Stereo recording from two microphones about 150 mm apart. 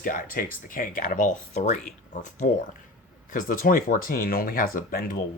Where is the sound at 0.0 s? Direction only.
65° left (ahead or behind).